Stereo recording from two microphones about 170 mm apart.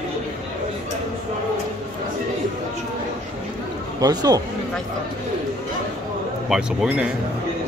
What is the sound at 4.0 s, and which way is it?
Speech, 20° right (ahead or behind).